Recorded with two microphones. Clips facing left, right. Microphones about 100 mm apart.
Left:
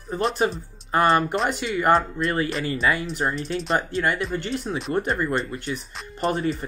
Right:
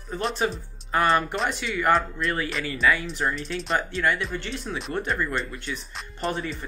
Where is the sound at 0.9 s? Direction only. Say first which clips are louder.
Left 3 dB; 35° left (ahead or behind).